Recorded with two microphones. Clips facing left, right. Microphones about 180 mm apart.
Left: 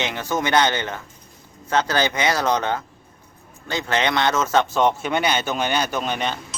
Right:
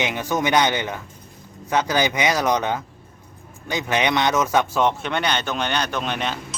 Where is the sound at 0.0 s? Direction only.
15° right (ahead or behind).